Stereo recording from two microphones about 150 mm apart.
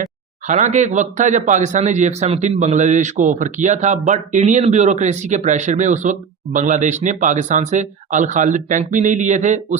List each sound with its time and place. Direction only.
0.4 s speech: 55° right (ahead or behind)